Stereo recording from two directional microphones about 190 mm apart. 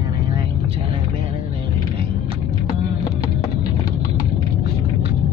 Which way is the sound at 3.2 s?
25° left (ahead or behind).